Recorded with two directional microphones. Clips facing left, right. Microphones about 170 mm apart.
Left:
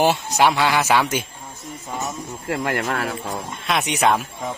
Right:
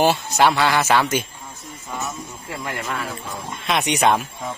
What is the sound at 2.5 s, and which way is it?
Speech, 75° left (ahead or behind).